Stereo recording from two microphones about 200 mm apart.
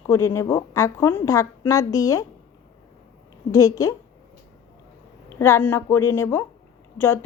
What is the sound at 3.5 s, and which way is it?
Speech, 15° left (ahead or behind).